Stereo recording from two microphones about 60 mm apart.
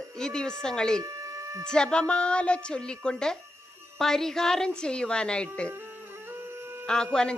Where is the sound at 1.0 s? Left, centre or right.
Right.